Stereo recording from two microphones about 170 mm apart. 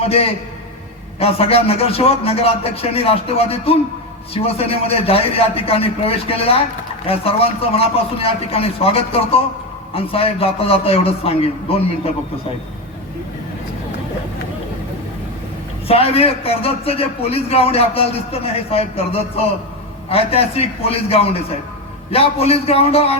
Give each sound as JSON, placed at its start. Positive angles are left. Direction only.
{"t": 0.0, "sound": "a man's voice", "side_deg": 35}
{"t": 15.9, "sound": "a man's voice", "side_deg": 35}